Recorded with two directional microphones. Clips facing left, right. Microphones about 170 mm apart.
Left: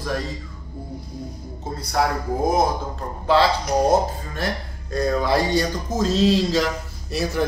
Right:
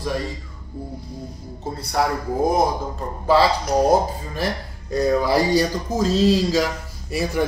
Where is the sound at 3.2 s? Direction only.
5° right (ahead or behind).